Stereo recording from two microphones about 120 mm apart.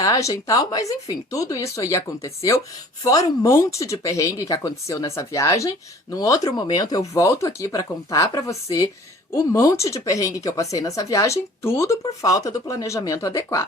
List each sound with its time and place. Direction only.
0.0 s a woman's voice: 25° left (ahead or behind)